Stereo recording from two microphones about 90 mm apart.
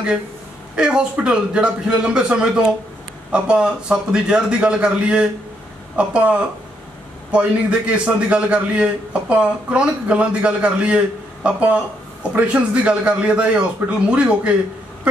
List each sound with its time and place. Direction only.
0.7 s a man's voice: 10° right (ahead or behind)